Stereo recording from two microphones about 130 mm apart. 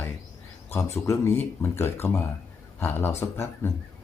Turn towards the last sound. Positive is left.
turn(degrees=20)  # may be behind; listen again after turning